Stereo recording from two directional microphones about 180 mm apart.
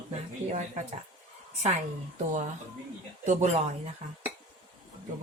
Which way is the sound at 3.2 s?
40° right (ahead or behind).